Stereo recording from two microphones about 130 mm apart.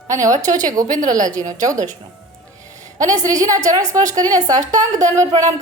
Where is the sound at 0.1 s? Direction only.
25° right (ahead or behind).